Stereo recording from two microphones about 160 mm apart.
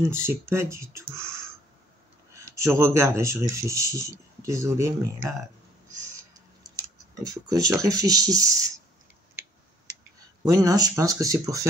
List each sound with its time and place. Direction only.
0.1 s speech: 15° right (ahead or behind)
2.3 s speech: 20° right (ahead or behind)
6.8 s speech: 25° right (ahead or behind)
10.4 s speech: 20° right (ahead or behind)